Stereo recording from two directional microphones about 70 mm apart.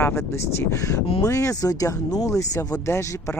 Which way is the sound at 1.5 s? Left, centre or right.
Left.